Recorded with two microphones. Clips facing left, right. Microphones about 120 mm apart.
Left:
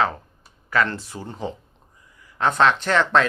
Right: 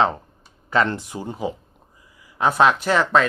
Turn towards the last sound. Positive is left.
turn(degrees=-10)  # may be behind; listen again after turning